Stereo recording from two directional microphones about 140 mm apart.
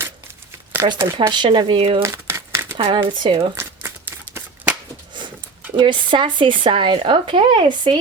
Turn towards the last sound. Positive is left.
turn(degrees=-35)  # may be behind; listen again after turning